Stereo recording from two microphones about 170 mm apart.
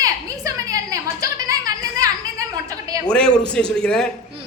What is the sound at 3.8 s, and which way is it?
Speech, 5° left (ahead or behind).